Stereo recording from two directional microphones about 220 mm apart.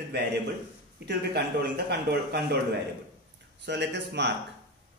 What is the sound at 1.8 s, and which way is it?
Speech, 50° right (ahead or behind).